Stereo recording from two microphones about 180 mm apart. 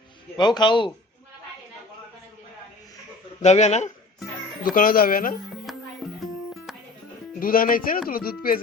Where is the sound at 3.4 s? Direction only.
40° left (ahead or behind).